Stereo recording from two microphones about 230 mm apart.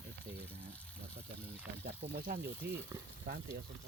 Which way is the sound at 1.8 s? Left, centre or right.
Right.